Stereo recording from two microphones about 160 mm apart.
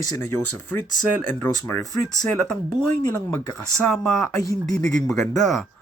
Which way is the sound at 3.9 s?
15° left (ahead or behind).